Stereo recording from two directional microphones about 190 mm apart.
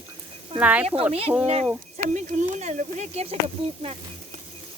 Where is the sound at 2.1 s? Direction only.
40° right (ahead or behind).